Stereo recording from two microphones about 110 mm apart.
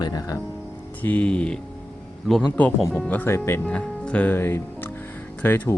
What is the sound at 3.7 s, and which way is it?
Speech, 10° left (ahead or behind).